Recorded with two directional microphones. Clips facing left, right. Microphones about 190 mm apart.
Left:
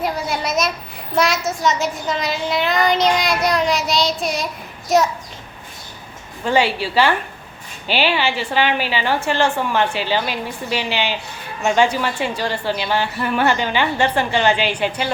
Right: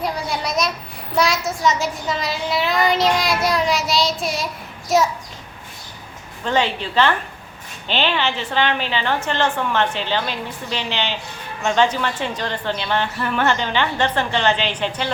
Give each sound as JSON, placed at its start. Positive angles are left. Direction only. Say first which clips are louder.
{"t": 0.0, "sound": "a sound", "louder": "left 2 dB", "side_deg": 0}
{"t": 1.1, "sound": "a child's voice", "louder": "left 1 dB", "side_deg": 0}
{"t": 6.4, "sound": "a woman's voice", "louder": "left 3 dB", "side_deg": 10}